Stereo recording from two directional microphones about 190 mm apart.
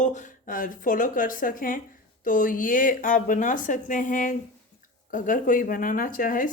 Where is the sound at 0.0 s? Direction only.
40° left (ahead or behind).